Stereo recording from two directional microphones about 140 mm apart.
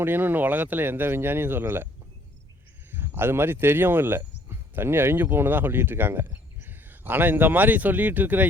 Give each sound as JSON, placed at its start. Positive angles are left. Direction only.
{"t": 0.0, "sound": "speech", "side_deg": -15}
{"t": 2.9, "sound": "speech", "side_deg": -15}